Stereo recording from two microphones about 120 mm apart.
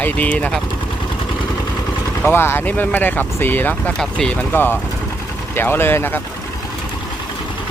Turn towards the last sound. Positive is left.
turn(degrees=20)  # may be behind; listen again after turning